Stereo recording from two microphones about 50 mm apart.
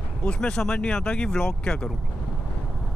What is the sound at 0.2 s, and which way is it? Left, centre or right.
Speech, left.